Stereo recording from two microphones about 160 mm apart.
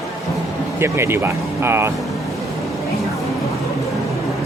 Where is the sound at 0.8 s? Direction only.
15° right (ahead or behind).